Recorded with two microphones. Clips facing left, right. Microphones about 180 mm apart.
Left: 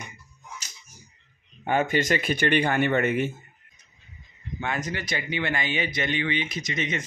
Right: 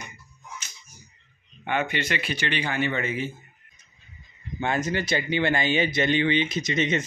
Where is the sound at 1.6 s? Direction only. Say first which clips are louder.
Left 4 dB; 40° left (ahead or behind); by 3.3 s 60° left (ahead or behind).